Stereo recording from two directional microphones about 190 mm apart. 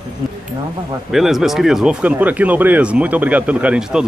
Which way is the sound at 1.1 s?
Centre (ahead or behind).